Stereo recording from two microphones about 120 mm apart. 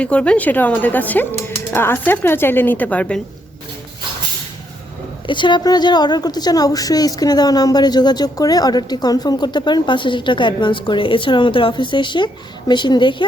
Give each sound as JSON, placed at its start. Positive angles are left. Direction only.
{"t": 0.0, "sound": "speech", "side_deg": 10}
{"t": 5.2, "sound": "a woman's voice", "side_deg": 40}